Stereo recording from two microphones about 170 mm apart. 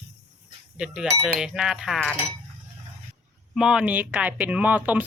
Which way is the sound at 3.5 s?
5° right (ahead or behind).